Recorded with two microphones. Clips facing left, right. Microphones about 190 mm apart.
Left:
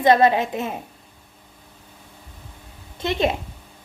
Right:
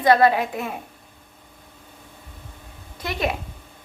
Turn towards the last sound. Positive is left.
turn(degrees=25)  # may be behind; listen again after turning